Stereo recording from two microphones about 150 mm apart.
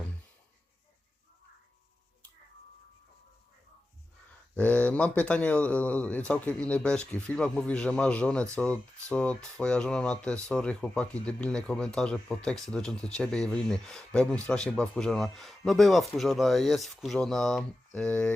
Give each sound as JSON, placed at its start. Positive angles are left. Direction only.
{"t": 4.5, "sound": "speech", "side_deg": 10}